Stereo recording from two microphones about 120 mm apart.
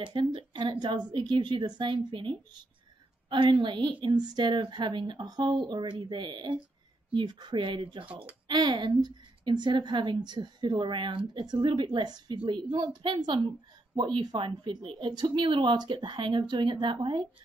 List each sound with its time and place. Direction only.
0.0 s a woman's voice: 45° right (ahead or behind)